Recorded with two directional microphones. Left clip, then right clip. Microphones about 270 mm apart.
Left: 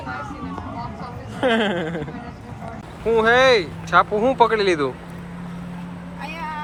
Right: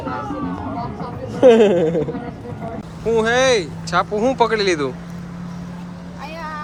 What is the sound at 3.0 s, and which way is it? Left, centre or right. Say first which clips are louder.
Speech: left 1 dB; centre.